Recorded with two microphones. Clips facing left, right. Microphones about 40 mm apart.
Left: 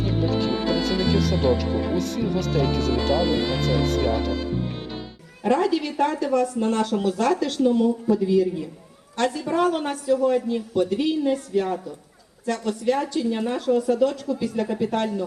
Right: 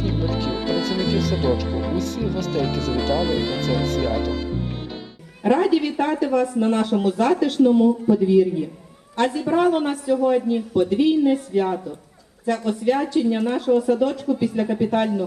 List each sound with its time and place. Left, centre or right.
0.0 s speech: centre
5.4 s speech: centre